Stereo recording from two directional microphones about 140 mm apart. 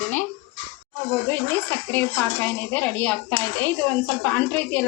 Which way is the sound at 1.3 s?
15° left (ahead or behind).